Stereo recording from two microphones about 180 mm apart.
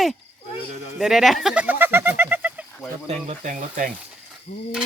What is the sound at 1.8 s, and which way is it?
Bird, 10° right (ahead or behind).